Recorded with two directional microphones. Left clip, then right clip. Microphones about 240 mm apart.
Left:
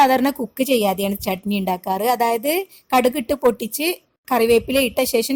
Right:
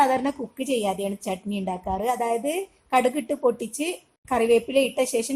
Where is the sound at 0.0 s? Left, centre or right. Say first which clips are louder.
Left 6 dB; left.